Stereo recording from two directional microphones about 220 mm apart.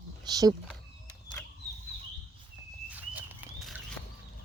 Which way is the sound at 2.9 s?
10° right (ahead or behind).